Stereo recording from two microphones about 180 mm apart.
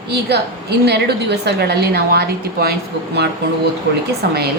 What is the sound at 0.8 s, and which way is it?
A woman's voice, 65° right (ahead or behind).